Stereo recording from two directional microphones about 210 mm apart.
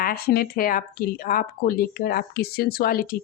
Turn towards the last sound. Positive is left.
turn(degrees=45)  # may be behind; listen again after turning